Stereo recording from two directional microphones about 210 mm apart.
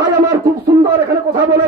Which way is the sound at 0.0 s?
15° right (ahead or behind).